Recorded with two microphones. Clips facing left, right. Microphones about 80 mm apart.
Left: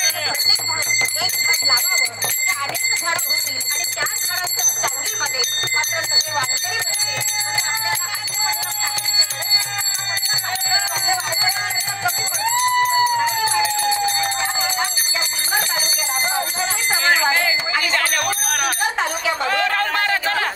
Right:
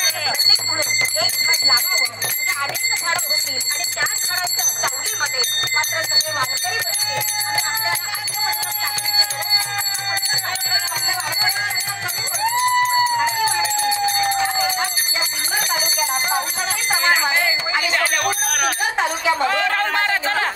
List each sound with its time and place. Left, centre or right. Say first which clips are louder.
7.5 s jingle bell: right 1 dB; right
12.5 s a sound: even; right
13.9 s jingle bell: right 2 dB; right
15.6 s bell: right 2 dB; right
16.9 s music: even; centre
18.7 s a sound: right 1 dB; right